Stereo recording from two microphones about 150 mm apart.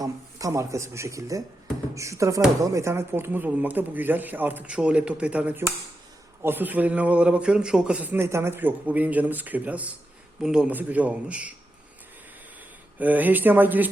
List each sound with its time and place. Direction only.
0.0 s a man's voice: 20° right (ahead or behind)
13.0 s a man's voice: 10° right (ahead or behind)